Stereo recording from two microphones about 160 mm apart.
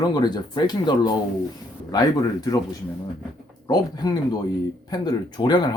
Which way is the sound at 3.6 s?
25° left (ahead or behind).